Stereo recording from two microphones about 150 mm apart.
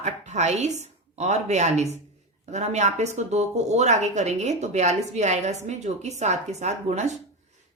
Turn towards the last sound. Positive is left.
turn(degrees=-50)  # may be behind; listen again after turning